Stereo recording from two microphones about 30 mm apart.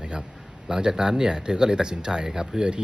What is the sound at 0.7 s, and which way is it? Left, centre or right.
Speech, right.